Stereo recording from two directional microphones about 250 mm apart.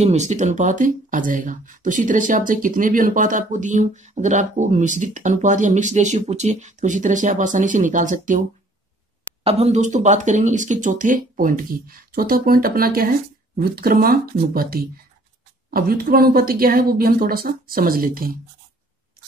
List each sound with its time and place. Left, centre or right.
0.0 s speech: right